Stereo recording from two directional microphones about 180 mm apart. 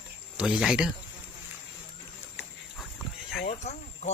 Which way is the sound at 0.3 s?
5° right (ahead or behind).